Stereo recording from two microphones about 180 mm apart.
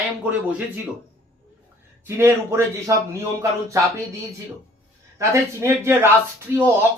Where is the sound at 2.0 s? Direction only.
15° right (ahead or behind).